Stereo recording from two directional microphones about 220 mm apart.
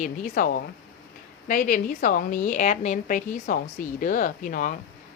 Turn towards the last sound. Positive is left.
turn(degrees=35)  # may be behind; listen again after turning